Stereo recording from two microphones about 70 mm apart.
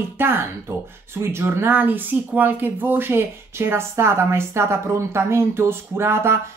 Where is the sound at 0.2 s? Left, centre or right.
Right.